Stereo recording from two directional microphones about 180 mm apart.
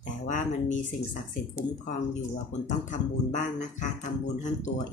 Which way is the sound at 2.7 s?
40° left (ahead or behind).